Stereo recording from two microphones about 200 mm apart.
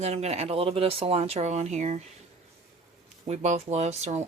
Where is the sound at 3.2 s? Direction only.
35° right (ahead or behind).